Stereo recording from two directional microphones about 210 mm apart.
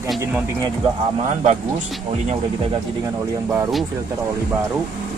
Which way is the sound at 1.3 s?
30° right (ahead or behind).